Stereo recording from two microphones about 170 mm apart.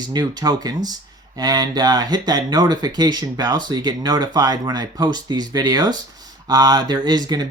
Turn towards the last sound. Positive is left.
turn(degrees=-25)  # may be behind; listen again after turning